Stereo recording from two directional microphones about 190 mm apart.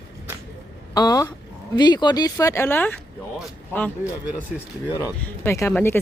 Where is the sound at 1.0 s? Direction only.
20° left (ahead or behind).